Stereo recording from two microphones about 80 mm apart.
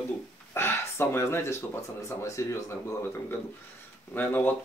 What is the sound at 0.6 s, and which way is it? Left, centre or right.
Speech, left.